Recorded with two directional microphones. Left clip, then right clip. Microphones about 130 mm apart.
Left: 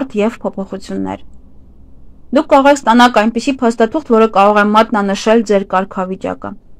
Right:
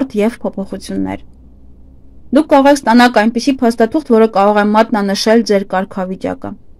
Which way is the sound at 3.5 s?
15° right (ahead or behind).